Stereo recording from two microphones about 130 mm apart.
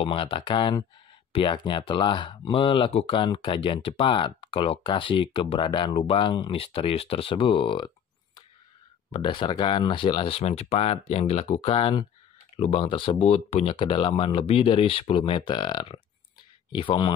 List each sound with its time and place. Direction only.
0.0 s speech: 45° left (ahead or behind)
9.1 s speech: 40° left (ahead or behind)